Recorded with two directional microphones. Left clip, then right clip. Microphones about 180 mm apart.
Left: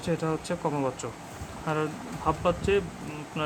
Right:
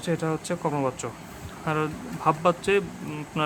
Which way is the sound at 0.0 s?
5° right (ahead or behind).